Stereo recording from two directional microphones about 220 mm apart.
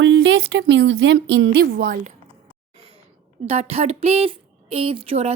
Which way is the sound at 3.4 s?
30° right (ahead or behind).